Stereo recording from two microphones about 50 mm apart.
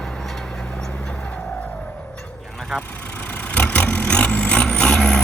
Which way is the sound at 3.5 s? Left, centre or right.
Left.